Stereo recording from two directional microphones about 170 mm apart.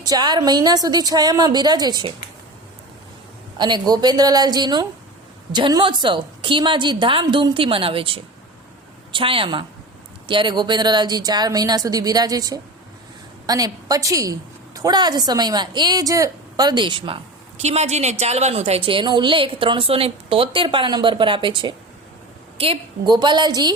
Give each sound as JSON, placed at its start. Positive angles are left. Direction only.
{"t": 0.0, "sound": "a woman's voice", "side_deg": -25}
{"t": 3.6, "sound": "a woman's voice", "side_deg": -25}
{"t": 17.6, "sound": "a woman's voice", "side_deg": -40}